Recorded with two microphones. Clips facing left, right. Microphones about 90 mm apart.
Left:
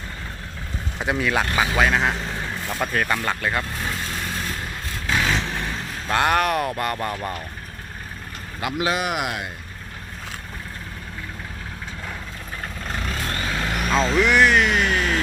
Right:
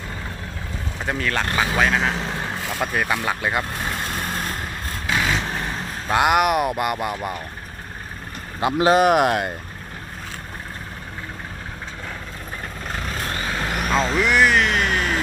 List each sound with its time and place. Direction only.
1.0 s speech: 10° left (ahead or behind); by 3.7 s 15° right (ahead or behind)
4.0 s vehicle: 45° right (ahead or behind)
5.0 s vehicle: 5° right (ahead or behind)
6.1 s speech: 15° right (ahead or behind)
8.6 s speech: 35° right (ahead or behind)
13.2 s vehicle: 5° right (ahead or behind)